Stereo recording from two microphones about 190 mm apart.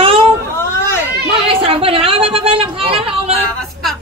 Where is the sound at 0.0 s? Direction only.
30° right (ahead or behind).